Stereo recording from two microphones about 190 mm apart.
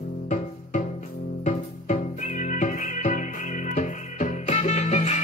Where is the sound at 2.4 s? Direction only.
40° left (ahead or behind).